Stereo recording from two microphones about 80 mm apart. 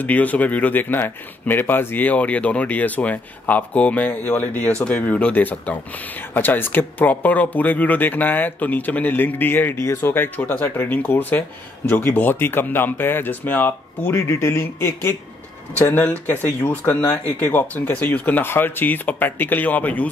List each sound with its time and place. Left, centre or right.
0.0 s speech: centre
15.9 s speech: left